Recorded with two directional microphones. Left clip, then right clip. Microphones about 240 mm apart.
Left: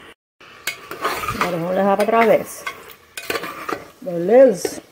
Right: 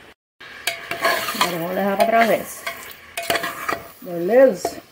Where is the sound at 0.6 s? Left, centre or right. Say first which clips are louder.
Right 3 dB; centre.